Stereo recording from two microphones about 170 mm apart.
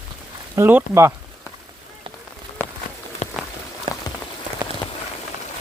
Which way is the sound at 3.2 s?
45° left (ahead or behind).